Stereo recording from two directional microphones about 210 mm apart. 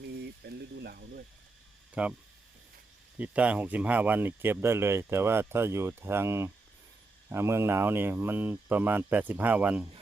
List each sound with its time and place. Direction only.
0.0 s a sound: 50° right (ahead or behind)
2.0 s speech: 5° right (ahead or behind)
3.2 s speech: 5° right (ahead or behind)